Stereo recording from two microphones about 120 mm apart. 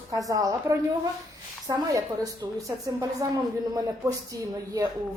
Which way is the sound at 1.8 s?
30° right (ahead or behind).